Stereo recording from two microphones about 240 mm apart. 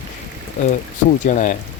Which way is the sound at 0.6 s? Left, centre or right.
Left.